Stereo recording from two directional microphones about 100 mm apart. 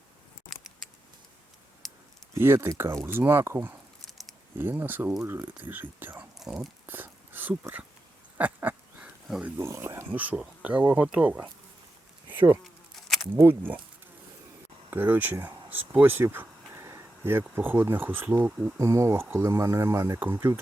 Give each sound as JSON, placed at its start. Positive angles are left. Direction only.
{"t": 0.5, "sound": "a sound", "side_deg": 0}
{"t": 2.3, "sound": "speech", "side_deg": -25}
{"t": 6.4, "sound": "speech", "side_deg": -5}
{"t": 6.8, "sound": "whispering", "side_deg": -20}
{"t": 8.4, "sound": "duck", "side_deg": -15}
{"t": 9.6, "sound": "speech", "side_deg": -25}
{"t": 12.3, "sound": "insect", "side_deg": -20}
{"t": 13.3, "sound": "speech", "side_deg": -20}
{"t": 14.8, "sound": "a sound", "side_deg": -20}
{"t": 17.5, "sound": "speech", "side_deg": -20}
{"t": 18.8, "sound": "speech", "side_deg": -30}